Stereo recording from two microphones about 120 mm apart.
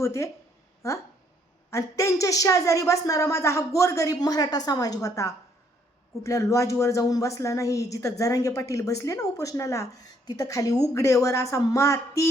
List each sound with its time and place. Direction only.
0.0 s a woman's voice: 25° left (ahead or behind)
1.7 s speech: 25° left (ahead or behind)